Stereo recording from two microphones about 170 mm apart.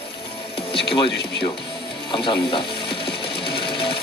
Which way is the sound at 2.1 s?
30° left (ahead or behind).